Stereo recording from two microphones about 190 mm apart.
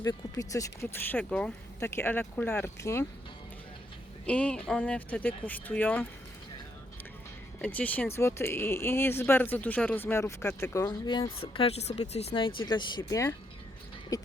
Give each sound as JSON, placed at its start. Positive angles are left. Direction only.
{"t": 0.0, "sound": "speech", "side_deg": 15}
{"t": 4.3, "sound": "speech", "side_deg": 5}
{"t": 7.6, "sound": "speech", "side_deg": 10}